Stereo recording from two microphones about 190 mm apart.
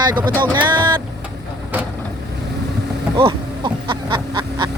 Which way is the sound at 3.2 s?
25° right (ahead or behind).